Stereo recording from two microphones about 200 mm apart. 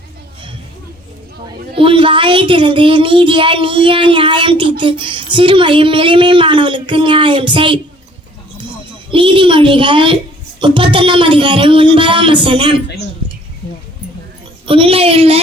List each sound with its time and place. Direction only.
1.7 s speech: 25° right (ahead or behind)
9.1 s speech: 25° right (ahead or behind)
14.7 s speech: 25° right (ahead or behind)